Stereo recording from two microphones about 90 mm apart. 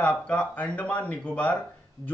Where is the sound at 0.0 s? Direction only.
15° left (ahead or behind).